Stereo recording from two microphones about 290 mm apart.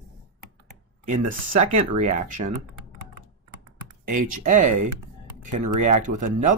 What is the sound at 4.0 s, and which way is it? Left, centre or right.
Speech, right.